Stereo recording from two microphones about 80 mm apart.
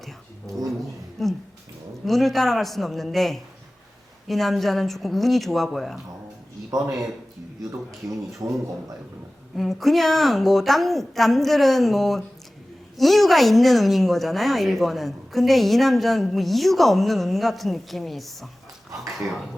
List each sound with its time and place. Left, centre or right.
0.0 s a sound: centre
1.2 s a woman's voice: centre
8.4 s a man's voice: right
9.6 s a woman's voice: centre